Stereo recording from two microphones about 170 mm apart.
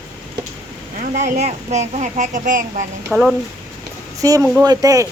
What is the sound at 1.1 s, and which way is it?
Speech, 45° right (ahead or behind).